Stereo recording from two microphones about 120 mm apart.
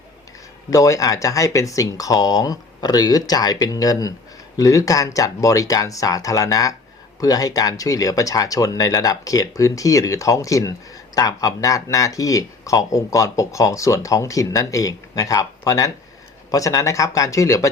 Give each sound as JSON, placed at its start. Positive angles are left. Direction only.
{"t": 0.7, "sound": "speech", "side_deg": 30}